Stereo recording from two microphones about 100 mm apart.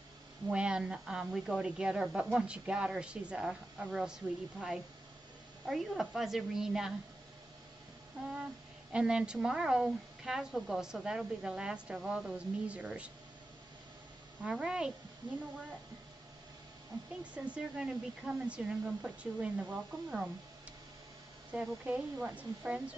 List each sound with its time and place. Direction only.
0.5 s a woman's voice: 10° right (ahead or behind)
8.9 s speech: 10° right (ahead or behind)
14.4 s speech: 10° right (ahead or behind)
15.2 s speech: 45° right (ahead or behind)
17.2 s speech: 10° right (ahead or behind)
21.5 s speech: 15° right (ahead or behind)